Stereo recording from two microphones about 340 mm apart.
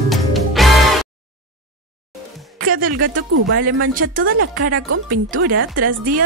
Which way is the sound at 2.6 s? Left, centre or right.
Right.